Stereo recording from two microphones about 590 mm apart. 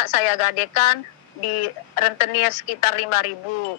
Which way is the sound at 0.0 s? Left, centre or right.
Left.